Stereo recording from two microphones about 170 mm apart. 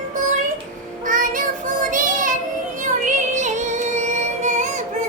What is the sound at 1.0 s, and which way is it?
Child singing, 50° right (ahead or behind).